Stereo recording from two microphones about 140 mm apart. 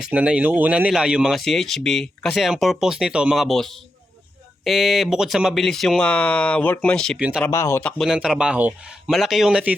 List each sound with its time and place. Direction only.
0.0 s speech: 10° right (ahead or behind)
7.2 s speech: 10° right (ahead or behind)
7.4 s speech: 20° left (ahead or behind)
7.9 s speech: centre (ahead or behind)